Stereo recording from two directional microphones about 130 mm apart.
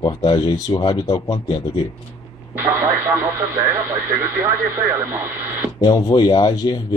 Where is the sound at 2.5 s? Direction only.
15° right (ahead or behind).